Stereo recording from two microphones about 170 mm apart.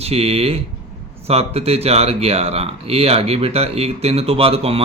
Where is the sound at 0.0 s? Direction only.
35° right (ahead or behind).